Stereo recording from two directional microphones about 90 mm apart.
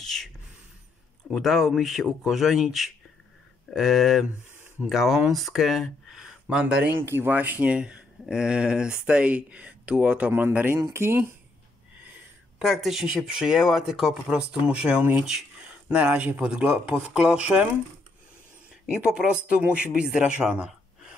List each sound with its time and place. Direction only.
0.0 s a sound: 5° left (ahead or behind)
1.3 s speech: centre (ahead or behind)
6.6 s speech: 20° right (ahead or behind)
12.5 s speech: centre (ahead or behind)
19.1 s speech: 10° right (ahead or behind)